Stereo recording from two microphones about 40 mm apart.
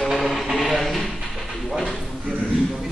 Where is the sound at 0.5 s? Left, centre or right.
Centre.